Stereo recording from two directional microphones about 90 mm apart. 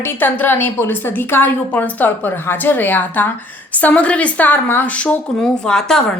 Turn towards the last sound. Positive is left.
turn(degrees=10)  # may be behind; listen again after turning